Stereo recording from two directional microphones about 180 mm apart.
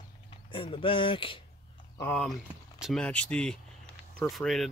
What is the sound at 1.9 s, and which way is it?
Speech, 10° left (ahead or behind).